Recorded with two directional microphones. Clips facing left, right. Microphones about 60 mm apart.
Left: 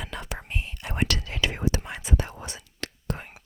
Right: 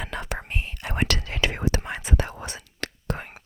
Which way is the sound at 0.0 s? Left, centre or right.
Right.